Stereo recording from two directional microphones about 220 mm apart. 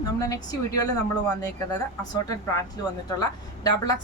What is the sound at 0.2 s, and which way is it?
Speech, 15° left (ahead or behind).